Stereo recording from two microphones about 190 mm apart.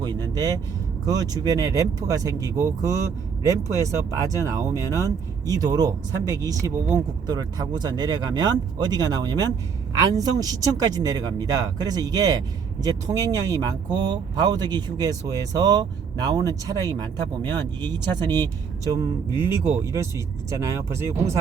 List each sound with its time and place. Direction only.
0.0 s speech: 20° right (ahead or behind)